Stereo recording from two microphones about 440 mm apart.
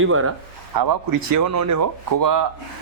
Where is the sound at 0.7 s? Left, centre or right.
Right.